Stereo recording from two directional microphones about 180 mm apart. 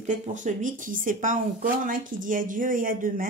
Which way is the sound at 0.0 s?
45° right (ahead or behind).